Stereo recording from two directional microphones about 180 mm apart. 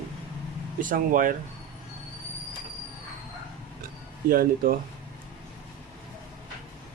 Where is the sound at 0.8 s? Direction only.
50° right (ahead or behind).